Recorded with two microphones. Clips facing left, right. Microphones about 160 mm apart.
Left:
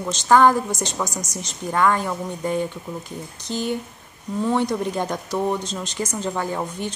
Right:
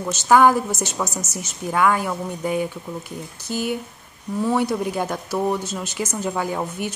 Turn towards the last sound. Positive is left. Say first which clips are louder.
# right 1 dB
turn(degrees=-10)  # may be behind; listen again after turning